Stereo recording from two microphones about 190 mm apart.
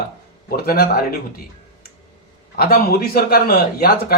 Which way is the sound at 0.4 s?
55° left (ahead or behind).